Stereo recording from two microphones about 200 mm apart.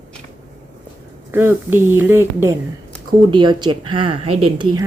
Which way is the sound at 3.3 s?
20° right (ahead or behind).